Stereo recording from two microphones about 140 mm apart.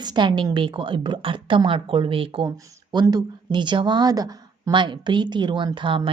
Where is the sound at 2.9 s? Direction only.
30° right (ahead or behind).